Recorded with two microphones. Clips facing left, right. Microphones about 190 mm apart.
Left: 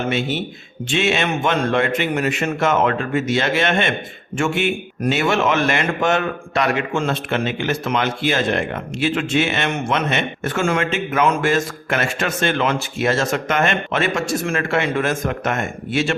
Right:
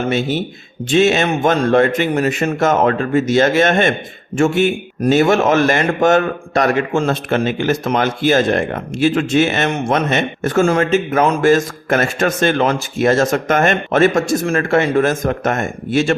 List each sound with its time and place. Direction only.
0.1 s speech: 40° right (ahead or behind)